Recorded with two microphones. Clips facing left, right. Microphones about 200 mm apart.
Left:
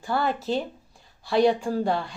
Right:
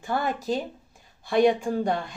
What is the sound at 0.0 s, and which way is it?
Speech, 20° right (ahead or behind).